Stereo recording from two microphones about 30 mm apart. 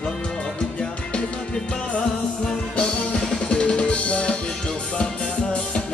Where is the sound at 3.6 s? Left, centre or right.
Left.